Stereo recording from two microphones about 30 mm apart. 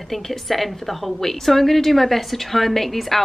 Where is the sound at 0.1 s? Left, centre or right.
Centre.